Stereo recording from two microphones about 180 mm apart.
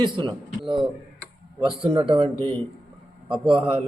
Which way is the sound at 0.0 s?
25° right (ahead or behind).